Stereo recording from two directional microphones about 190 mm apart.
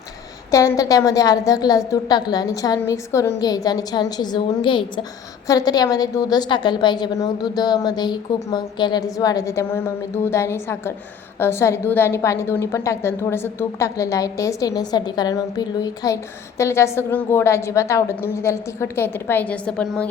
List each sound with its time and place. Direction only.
0.5 s a woman's voice: 15° left (ahead or behind)